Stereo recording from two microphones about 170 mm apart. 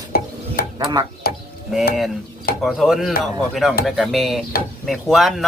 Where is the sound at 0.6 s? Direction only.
65° left (ahead or behind).